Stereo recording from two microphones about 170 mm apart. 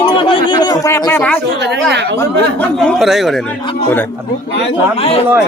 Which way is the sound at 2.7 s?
Centre (ahead or behind).